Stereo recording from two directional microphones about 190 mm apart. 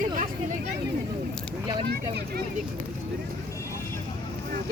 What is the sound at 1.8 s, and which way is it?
Speech, 60° right (ahead or behind).